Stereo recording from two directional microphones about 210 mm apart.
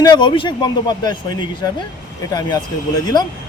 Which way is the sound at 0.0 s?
20° left (ahead or behind).